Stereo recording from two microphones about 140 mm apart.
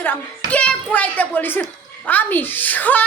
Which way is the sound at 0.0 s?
10° left (ahead or behind).